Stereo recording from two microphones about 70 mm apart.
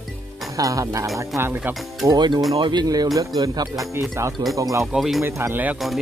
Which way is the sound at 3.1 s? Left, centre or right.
Right.